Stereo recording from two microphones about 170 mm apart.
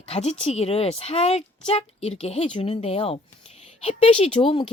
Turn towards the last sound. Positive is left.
turn(degrees=30)  # may be behind; listen again after turning